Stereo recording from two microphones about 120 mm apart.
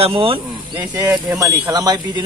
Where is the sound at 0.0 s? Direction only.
50° right (ahead or behind).